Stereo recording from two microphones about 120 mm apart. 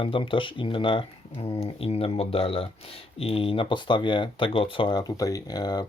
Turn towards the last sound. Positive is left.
turn(degrees=35)  # may be behind; listen again after turning